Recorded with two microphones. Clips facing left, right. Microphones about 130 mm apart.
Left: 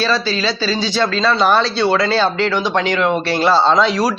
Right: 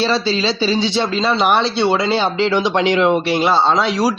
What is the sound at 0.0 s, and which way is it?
Speech, 25° right (ahead or behind).